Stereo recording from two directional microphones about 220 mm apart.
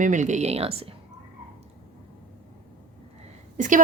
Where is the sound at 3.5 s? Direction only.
35° right (ahead or behind).